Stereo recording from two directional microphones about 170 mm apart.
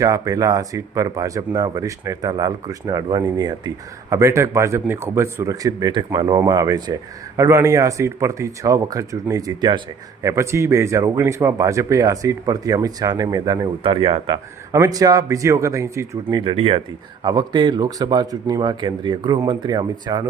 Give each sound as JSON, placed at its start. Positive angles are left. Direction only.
{"t": 0.0, "sound": "speech", "side_deg": -20}